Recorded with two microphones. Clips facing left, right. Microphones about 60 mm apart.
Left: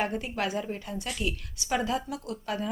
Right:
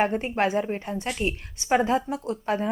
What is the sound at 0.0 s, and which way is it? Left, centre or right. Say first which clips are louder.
Speech: right 7 dB; right.